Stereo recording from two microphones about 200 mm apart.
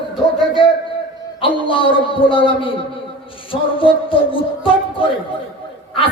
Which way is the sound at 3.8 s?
25° left (ahead or behind).